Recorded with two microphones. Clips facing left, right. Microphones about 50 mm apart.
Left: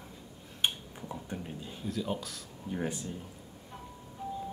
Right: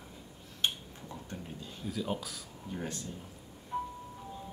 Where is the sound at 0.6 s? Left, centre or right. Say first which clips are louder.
Left 1 dB; centre.